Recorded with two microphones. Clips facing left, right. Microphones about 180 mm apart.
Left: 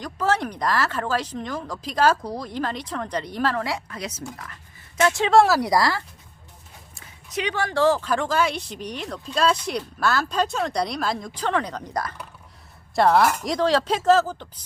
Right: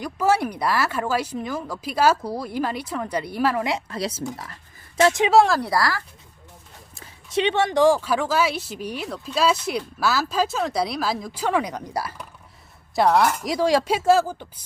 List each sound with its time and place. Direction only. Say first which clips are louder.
0.0 s speech: right 3 dB; 10° right (ahead or behind)
3.7 s a woman's voice: right 4 dB; 25° right (ahead or behind)
5.3 s speech: left 2 dB; centre (ahead or behind)
5.5 s speech: left 2 dB; 15° left (ahead or behind)
7.0 s speech: right 6 dB; 25° right (ahead or behind); by 14.6 s 10° right (ahead or behind)